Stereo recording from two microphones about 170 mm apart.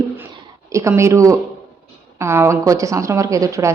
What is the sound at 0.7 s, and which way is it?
A woman's voice, 15° right (ahead or behind).